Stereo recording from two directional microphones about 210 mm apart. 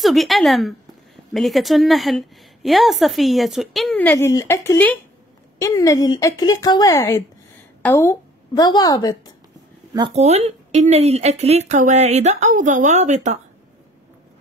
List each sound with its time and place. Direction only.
0.0 s a woman's voice: centre (ahead or behind); by 9.3 s 15° left (ahead or behind)
9.9 s speech: 25° right (ahead or behind)